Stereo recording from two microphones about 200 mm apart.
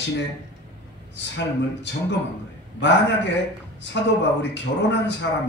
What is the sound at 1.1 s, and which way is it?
Speech, 60° left (ahead or behind).